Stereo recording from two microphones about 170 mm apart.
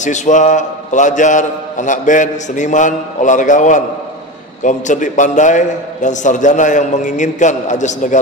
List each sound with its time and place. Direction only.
0.0 s a man's voice: 45° left (ahead or behind)